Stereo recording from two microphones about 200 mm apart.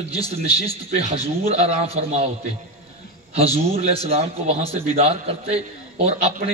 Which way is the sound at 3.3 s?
30° right (ahead or behind).